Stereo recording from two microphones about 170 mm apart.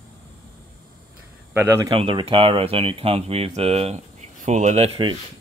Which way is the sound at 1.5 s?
15° right (ahead or behind).